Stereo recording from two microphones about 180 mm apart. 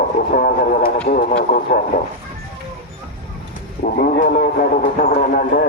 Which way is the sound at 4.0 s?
50° left (ahead or behind).